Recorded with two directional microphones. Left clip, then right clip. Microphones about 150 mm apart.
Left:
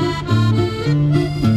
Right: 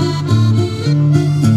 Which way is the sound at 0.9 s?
15° right (ahead or behind).